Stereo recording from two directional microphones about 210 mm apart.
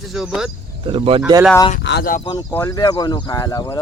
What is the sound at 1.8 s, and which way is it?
Speech, 50° left (ahead or behind).